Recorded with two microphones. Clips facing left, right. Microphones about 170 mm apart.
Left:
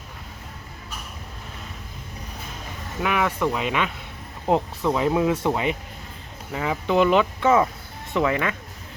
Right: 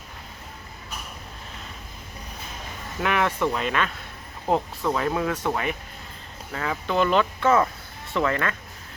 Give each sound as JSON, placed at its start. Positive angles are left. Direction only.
{"t": 3.0, "sound": "speech", "side_deg": 5}